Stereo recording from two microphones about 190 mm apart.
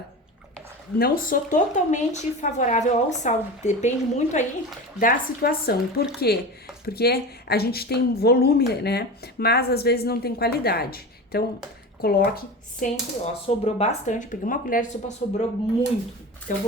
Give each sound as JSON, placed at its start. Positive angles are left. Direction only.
{"t": 0.9, "sound": "a woman's voice", "side_deg": 50}
{"t": 12.8, "sound": "a woman's voice", "side_deg": 35}